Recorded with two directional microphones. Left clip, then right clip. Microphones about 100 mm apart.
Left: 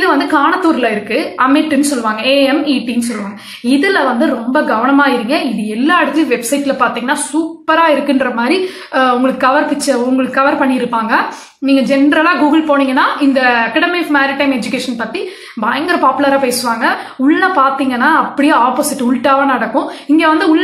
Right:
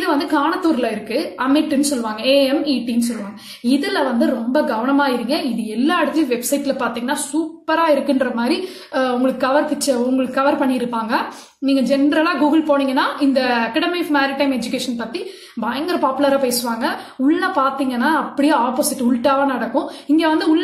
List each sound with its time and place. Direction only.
0.0 s a woman's voice: 20° right (ahead or behind)
15.6 s a woman's voice: 20° right (ahead or behind)